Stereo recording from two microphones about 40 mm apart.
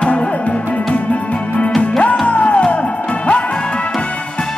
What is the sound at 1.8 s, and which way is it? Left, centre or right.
Music, left.